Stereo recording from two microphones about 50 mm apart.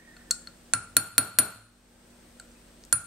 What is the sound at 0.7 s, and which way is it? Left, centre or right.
Glass, centre.